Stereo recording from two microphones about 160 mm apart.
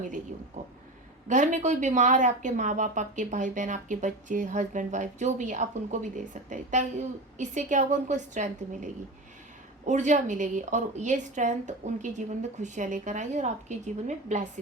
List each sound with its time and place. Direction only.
0.0 s speech: 50° right (ahead or behind)